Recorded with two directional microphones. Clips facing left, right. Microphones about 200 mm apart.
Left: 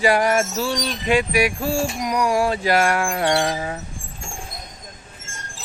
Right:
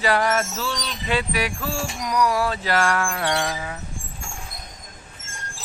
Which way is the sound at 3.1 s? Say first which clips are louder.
Left 5 dB; 30° left (ahead or behind).